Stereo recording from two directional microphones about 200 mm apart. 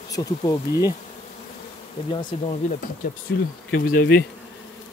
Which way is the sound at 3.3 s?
60° left (ahead or behind).